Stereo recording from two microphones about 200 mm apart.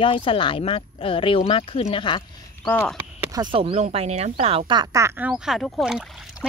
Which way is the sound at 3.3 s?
25° right (ahead or behind).